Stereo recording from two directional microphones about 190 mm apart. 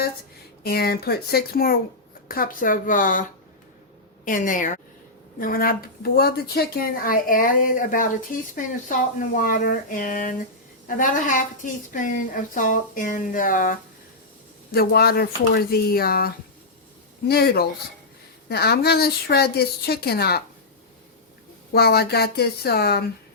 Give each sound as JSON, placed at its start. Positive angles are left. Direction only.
{"t": 0.6, "sound": "a woman's voice", "side_deg": 55}
{"t": 4.3, "sound": "a woman's voice", "side_deg": 45}
{"t": 21.7, "sound": "speech", "side_deg": 55}